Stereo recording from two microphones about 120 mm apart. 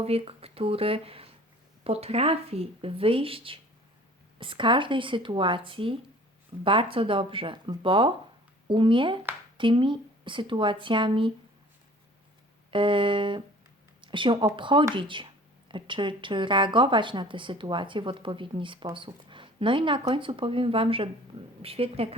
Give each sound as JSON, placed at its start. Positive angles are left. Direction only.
{"t": 0.0, "sound": "a woman's voice", "side_deg": -55}
{"t": 12.7, "sound": "a woman's voice", "side_deg": -45}